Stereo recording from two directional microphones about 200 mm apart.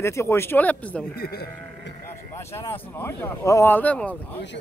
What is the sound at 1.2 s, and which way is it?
Speech, 50° left (ahead or behind).